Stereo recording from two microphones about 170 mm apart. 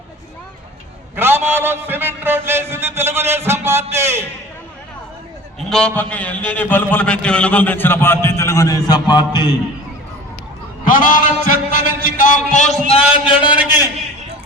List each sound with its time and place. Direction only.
1.1 s a sound: 15° right (ahead or behind)
3.9 s a man's voice: 15° right (ahead or behind)
5.5 s a man's voice: 5° left (ahead or behind); by 9.6 s 25° left (ahead or behind)
10.8 s a man's voice: 50° left (ahead or behind)
12.9 s a man's voice: 35° left (ahead or behind)